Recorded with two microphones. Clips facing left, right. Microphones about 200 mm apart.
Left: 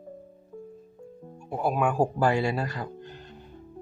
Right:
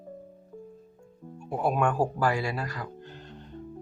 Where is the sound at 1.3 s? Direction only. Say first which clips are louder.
Even; centre (ahead or behind).